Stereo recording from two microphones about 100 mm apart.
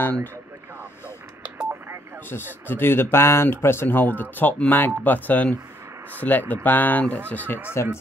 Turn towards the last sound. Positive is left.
turn(degrees=20)  # may be behind; listen again after turning